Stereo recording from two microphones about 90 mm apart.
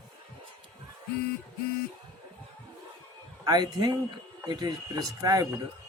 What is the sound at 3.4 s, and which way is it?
Speech, 50° right (ahead or behind).